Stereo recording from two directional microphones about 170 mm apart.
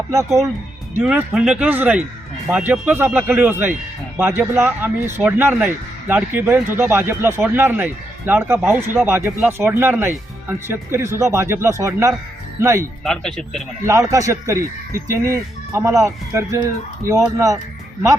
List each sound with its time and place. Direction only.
0.1 s speech: 15° right (ahead or behind)
1.0 s a man's voice: 5° right (ahead or behind)
13.1 s a man's voice: 5° left (ahead or behind)
14.1 s speech: 20° right (ahead or behind)